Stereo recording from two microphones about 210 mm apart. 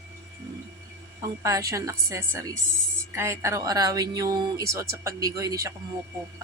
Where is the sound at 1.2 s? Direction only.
15° right (ahead or behind).